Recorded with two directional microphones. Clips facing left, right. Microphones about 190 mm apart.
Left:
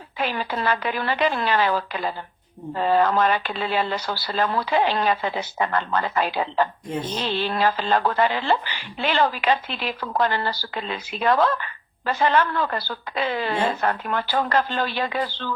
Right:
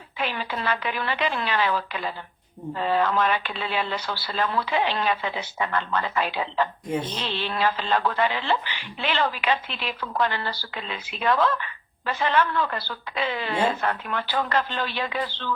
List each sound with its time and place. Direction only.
0.2 s a woman's voice: 40° left (ahead or behind)